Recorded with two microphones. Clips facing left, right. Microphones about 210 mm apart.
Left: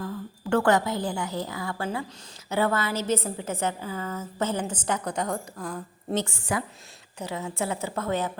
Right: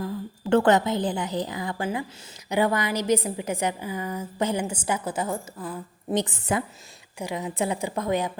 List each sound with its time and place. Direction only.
0.0 s a woman's voice: 20° right (ahead or behind)
6.2 s a woman's voice: 20° right (ahead or behind)